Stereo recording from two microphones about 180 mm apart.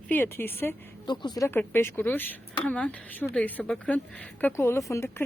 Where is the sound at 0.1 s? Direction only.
10° left (ahead or behind).